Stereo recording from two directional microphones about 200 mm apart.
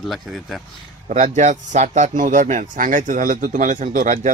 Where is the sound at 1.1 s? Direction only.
40° right (ahead or behind).